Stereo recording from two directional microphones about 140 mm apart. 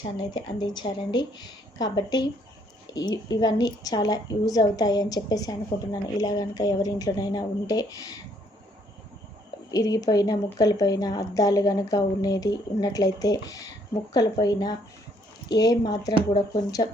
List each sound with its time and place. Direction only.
0.2 s a woman's voice: 30° left (ahead or behind)
9.7 s a woman's voice: 25° left (ahead or behind)